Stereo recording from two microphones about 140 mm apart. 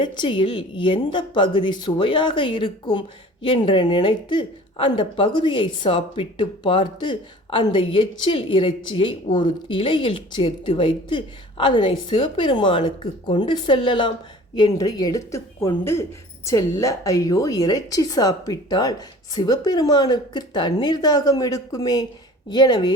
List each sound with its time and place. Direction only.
0.0 s a woman's voice: 35° left (ahead or behind)